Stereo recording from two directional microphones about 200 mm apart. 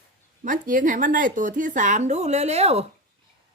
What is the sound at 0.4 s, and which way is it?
A woman's voice, 40° right (ahead or behind).